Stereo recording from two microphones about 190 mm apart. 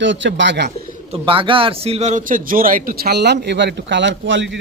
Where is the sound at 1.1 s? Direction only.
30° right (ahead or behind).